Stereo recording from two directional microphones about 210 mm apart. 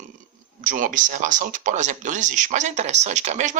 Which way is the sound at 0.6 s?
40° right (ahead or behind).